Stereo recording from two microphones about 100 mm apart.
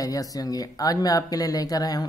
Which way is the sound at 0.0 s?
35° left (ahead or behind).